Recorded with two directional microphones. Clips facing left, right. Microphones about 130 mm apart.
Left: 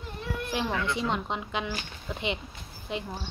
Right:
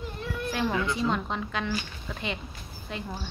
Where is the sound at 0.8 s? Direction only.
20° left (ahead or behind).